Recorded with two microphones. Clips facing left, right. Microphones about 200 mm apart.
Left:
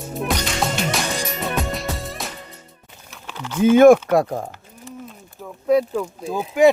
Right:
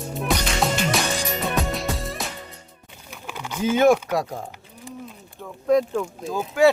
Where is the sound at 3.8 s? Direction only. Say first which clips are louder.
Left 7 dB; 55° left (ahead or behind).